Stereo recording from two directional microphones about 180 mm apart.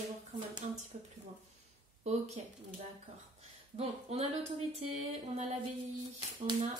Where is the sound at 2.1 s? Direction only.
40° right (ahead or behind).